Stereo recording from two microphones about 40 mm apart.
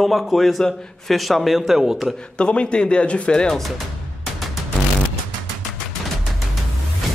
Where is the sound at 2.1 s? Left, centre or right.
Left.